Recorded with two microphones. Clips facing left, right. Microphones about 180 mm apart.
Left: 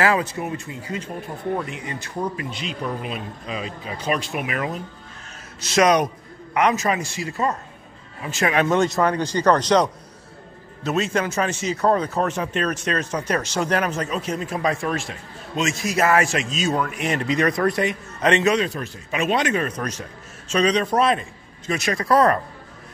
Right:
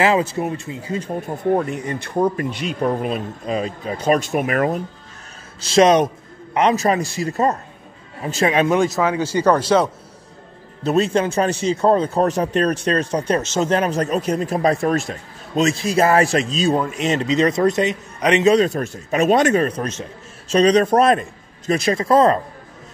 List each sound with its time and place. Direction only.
0.0 s speech: 25° right (ahead or behind); by 4.8 s 50° right (ahead or behind)
5.6 s a man's voice: 30° right (ahead or behind)
8.5 s speech: 20° right (ahead or behind)
8.7 s speech: 5° right (ahead or behind)
10.8 s a man's voice: 35° right (ahead or behind)
18.4 s a man's voice: 30° right (ahead or behind)
18.7 s a man's voice: 45° right (ahead or behind)
21.7 s speech: 30° right (ahead or behind)